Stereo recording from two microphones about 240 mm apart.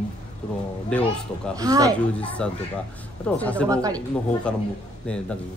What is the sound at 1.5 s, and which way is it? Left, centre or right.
Speech, centre.